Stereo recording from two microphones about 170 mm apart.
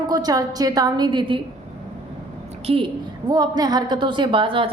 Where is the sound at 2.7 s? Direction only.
30° right (ahead or behind).